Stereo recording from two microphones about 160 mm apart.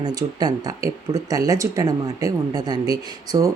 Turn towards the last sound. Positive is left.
turn(degrees=-25)  # may be behind; listen again after turning